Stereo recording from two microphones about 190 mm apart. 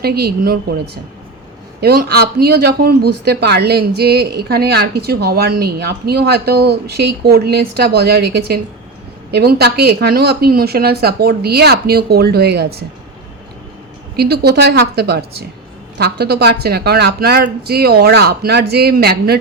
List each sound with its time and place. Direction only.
0.0 s speech: 55° right (ahead or behind)
1.8 s speech: 55° right (ahead or behind)
14.2 s speech: 55° right (ahead or behind)